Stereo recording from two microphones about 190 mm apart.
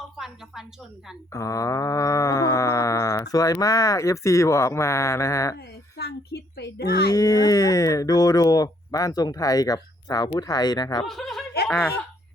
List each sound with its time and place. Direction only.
0.2 s a woman's voice: centre (ahead or behind)
1.3 s speech: 15° left (ahead or behind)
5.5 s a child's voice: 60° left (ahead or behind)
7.1 s speech: 20° left (ahead or behind)
11.0 s speech: centre (ahead or behind)
11.7 s speech: 15° left (ahead or behind)